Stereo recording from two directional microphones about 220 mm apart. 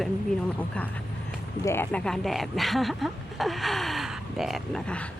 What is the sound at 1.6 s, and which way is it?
Speech, 10° left (ahead or behind).